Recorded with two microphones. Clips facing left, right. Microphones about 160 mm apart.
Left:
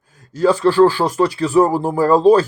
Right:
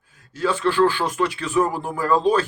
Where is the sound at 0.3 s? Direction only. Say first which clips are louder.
Left 7 dB; 35° left (ahead or behind).